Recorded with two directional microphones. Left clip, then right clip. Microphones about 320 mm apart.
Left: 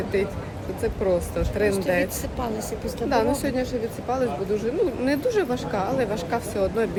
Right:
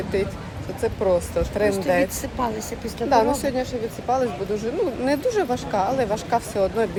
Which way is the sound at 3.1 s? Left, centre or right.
Centre.